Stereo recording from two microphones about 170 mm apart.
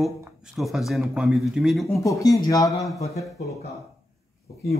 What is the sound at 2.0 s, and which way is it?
Speech, 20° left (ahead or behind).